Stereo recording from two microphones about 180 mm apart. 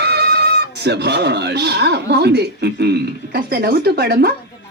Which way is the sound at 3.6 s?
60° right (ahead or behind).